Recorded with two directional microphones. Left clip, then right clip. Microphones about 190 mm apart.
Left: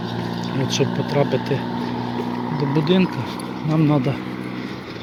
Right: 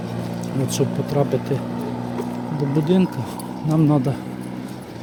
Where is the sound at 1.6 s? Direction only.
35° right (ahead or behind).